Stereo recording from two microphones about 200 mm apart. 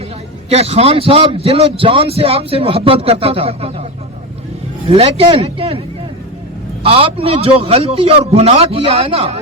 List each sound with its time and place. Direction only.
0.5 s a man's voice: 30° right (ahead or behind)
4.9 s a man's voice: 30° right (ahead or behind)
6.8 s a man's voice: 30° right (ahead or behind)